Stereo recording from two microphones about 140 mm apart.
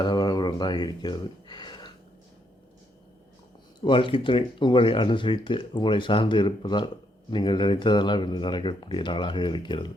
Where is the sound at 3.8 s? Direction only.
35° left (ahead or behind).